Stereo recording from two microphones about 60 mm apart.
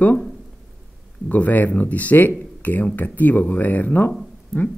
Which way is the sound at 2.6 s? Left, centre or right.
Left.